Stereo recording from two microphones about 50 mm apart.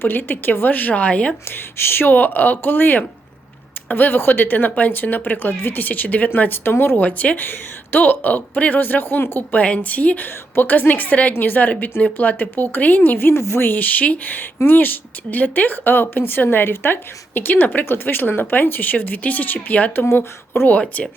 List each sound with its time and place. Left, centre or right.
0.0 s speech: left
1.5 s speech: left
7.0 s speech: left
9.6 s speech: left
13.6 s speech: left